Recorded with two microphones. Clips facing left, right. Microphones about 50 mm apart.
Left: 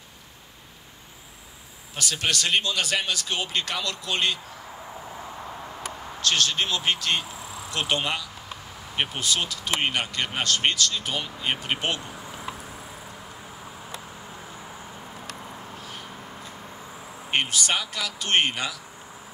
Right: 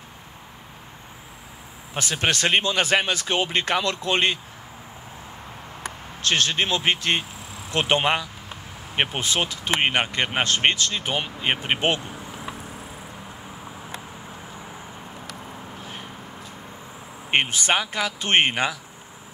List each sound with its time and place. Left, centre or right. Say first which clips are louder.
2.0 s speech: right 3 dB; right
5.9 s speech: right 2 dB; right
12.3 s vehicle: right 1 dB; right
14.3 s vehicle: right 2 dB; right
15.3 s vehicle: right 1 dB; centre
15.8 s vehicle: right 2 dB; right
17.3 s speech: right 4 dB; right